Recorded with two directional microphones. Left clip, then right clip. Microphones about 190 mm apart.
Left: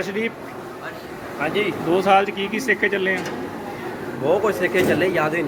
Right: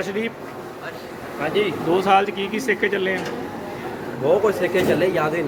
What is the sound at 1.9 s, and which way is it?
Speech, 10° left (ahead or behind).